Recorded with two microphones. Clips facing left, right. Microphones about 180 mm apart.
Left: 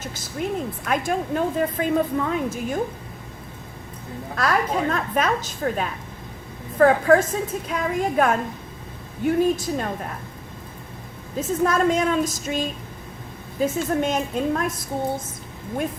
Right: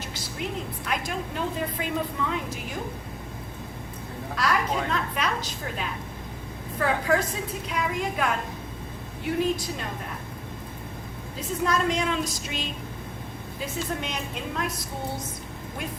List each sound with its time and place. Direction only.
0.0 s a sound: 45° left (ahead or behind)
0.9 s a woman's voice: 50° left (ahead or behind)
4.4 s a woman's voice: 50° left (ahead or behind)
11.3 s a woman's voice: 50° left (ahead or behind)